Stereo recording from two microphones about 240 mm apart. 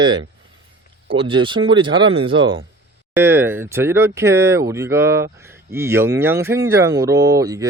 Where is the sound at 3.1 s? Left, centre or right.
Centre.